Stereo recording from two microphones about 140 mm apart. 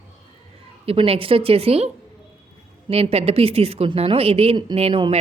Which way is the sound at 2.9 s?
45° right (ahead or behind).